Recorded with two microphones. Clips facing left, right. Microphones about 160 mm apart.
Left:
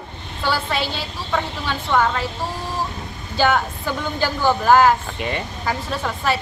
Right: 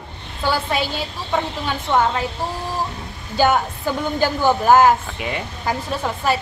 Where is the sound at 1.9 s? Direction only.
20° right (ahead or behind).